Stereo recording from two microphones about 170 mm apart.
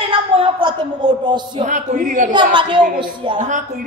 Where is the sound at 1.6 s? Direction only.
45° right (ahead or behind).